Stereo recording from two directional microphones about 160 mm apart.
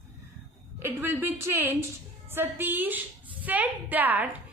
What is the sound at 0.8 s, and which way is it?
A woman's voice, 15° right (ahead or behind).